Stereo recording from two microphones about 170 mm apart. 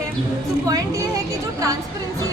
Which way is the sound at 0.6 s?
20° right (ahead or behind).